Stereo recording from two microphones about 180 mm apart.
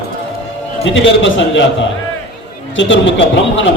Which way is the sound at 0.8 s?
90° left.